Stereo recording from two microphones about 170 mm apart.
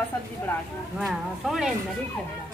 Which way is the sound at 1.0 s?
Centre (ahead or behind).